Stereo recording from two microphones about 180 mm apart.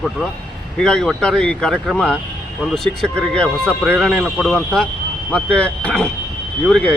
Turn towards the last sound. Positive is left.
turn(degrees=5)  # may be behind; listen again after turning